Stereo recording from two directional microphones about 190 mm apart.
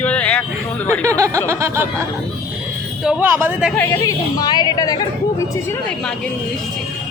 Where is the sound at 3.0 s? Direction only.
10° right (ahead or behind).